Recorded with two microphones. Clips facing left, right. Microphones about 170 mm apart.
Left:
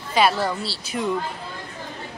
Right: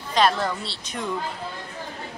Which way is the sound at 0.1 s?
5° left (ahead or behind).